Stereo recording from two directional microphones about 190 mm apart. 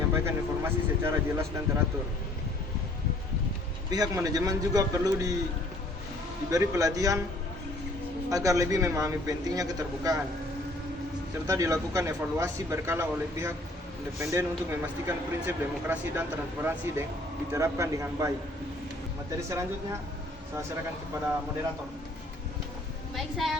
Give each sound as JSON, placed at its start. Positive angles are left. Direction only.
{"t": 0.1, "sound": "speech", "side_deg": -15}
{"t": 3.8, "sound": "a man's voice", "side_deg": -20}
{"t": 6.5, "sound": "speech", "side_deg": -15}
{"t": 8.3, "sound": "speech", "side_deg": -15}
{"t": 11.4, "sound": "speech", "side_deg": -15}
{"t": 19.5, "sound": "speech", "side_deg": -15}
{"t": 23.1, "sound": "a woman's voice", "side_deg": 0}